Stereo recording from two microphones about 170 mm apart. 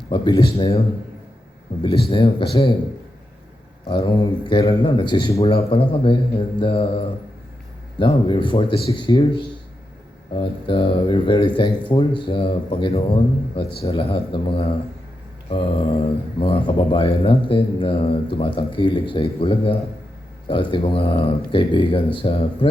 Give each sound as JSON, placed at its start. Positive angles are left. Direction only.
{"t": 0.1, "sound": "a man's voice", "side_deg": 25}
{"t": 1.8, "sound": "speech", "side_deg": 30}
{"t": 3.8, "sound": "speech", "side_deg": 30}